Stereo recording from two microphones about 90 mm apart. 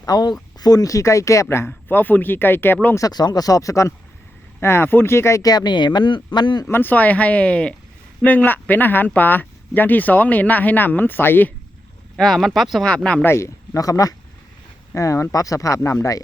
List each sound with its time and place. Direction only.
0.0 s speech: 45° left (ahead or behind); by 2.7 s 25° left (ahead or behind)
2.9 s speech: 45° left (ahead or behind)
5.5 s speech: 55° left (ahead or behind)
6.7 s speech: 25° left (ahead or behind)
12.1 s speech: 5° left (ahead or behind)
12.8 s speech: 10° left (ahead or behind)
13.2 s speech: 30° left (ahead or behind)